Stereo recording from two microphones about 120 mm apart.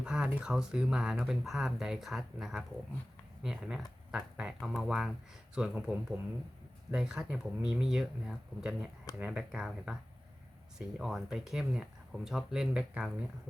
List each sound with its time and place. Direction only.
0.0 s speech: 5° right (ahead or behind)